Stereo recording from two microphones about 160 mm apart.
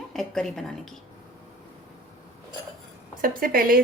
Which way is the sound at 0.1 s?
Centre (ahead or behind).